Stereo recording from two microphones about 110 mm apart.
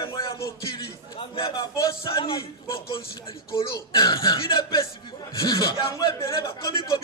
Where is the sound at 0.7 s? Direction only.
55° left (ahead or behind).